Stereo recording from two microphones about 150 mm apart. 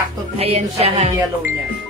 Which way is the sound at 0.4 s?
45° right (ahead or behind).